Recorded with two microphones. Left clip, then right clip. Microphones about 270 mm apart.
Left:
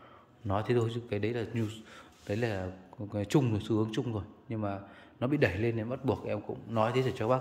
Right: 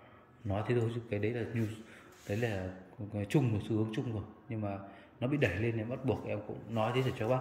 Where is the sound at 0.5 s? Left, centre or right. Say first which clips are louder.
Left 4 dB; centre.